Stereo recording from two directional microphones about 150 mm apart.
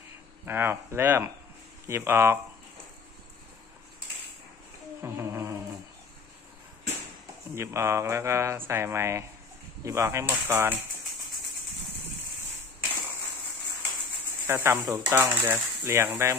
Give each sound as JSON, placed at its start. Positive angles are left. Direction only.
{"t": 0.5, "sound": "speech", "side_deg": -15}
{"t": 5.0, "sound": "a sound", "side_deg": -20}
{"t": 7.5, "sound": "speech", "side_deg": -20}
{"t": 14.4, "sound": "speech", "side_deg": -15}